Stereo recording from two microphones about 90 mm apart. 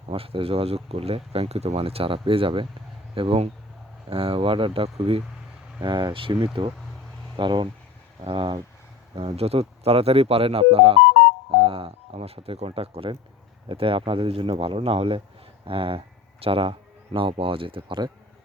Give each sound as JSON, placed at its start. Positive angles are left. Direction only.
{"t": 0.1, "sound": "speech", "side_deg": -85}
{"t": 5.8, "sound": "speech", "side_deg": -60}
{"t": 7.3, "sound": "speech", "side_deg": -60}
{"t": 9.1, "sound": "speech", "side_deg": -90}
{"t": 15.6, "sound": "speech", "side_deg": -80}